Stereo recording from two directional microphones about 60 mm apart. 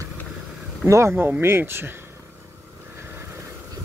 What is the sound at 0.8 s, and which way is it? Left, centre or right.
Speech, right.